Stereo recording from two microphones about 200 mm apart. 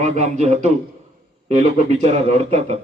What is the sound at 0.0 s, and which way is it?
A man's voice, 35° right (ahead or behind).